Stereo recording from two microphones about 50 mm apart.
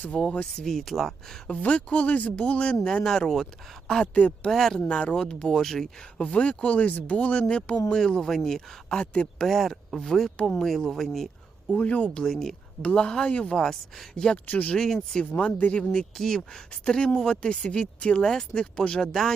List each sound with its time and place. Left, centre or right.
0.1 s speech: centre
1.5 s speech: left
2.8 s speech: centre
4.9 s speech: centre
6.1 s speech: left; by 9.0 s centre
9.0 s speech: centre
9.5 s speech: centre
11.7 s speech: left
12.2 s speech: centre
12.8 s speech: left
13.6 s speech: centre
14.4 s speech: left
15.9 s speech: centre